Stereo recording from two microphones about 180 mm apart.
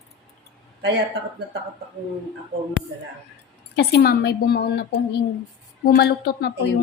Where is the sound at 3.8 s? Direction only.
60° left (ahead or behind).